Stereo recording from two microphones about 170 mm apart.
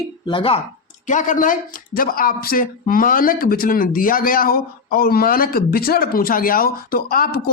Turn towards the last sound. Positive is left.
turn(degrees=60)  # may be behind; listen again after turning